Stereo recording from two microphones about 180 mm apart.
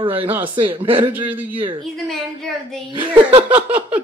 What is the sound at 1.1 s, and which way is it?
Speech, 10° right (ahead or behind).